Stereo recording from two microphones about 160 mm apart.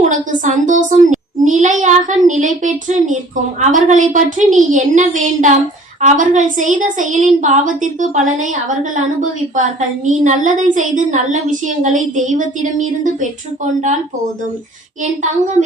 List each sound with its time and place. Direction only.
0.1 s a woman's voice: 50° right (ahead or behind)
10.1 s a woman's voice: 50° right (ahead or behind)